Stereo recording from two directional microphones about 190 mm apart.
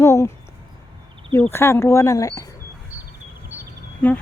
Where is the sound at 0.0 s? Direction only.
15° left (ahead or behind).